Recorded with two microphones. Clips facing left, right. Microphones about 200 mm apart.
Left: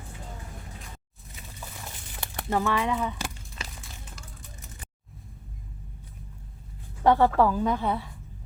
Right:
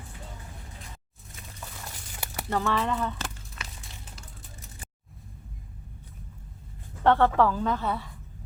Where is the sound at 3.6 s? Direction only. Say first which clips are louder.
Left 2 dB; 30° left (ahead or behind).